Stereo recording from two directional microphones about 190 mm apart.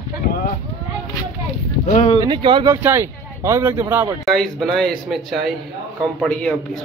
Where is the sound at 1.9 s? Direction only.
30° left (ahead or behind).